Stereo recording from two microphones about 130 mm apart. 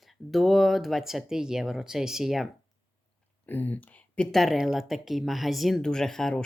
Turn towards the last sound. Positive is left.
turn(degrees=5)  # may be behind; listen again after turning